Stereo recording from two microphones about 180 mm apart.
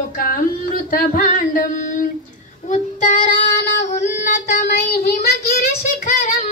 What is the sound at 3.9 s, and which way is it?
Female singing, 45° left (ahead or behind).